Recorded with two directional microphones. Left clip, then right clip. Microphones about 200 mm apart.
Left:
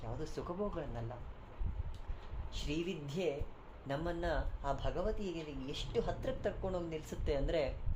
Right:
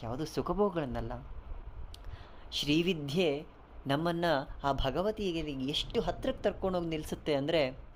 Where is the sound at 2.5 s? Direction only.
45° right (ahead or behind).